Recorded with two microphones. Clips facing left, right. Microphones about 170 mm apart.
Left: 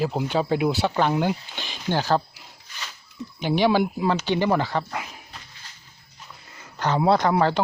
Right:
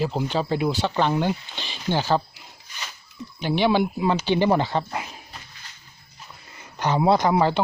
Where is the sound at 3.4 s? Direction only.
10° left (ahead or behind).